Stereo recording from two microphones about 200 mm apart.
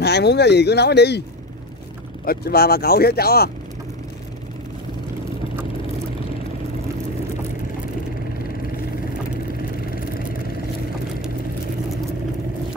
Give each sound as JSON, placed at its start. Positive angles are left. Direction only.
{"t": 0.0, "sound": "speech", "side_deg": 55}
{"t": 2.2, "sound": "speech", "side_deg": 50}